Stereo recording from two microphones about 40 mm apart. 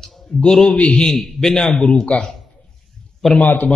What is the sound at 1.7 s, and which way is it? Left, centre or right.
Speech, centre.